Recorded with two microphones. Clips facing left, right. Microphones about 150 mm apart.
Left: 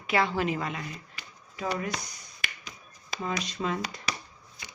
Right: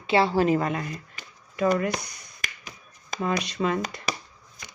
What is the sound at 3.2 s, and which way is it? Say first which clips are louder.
Speech: right 6 dB; 70° right (ahead or behind).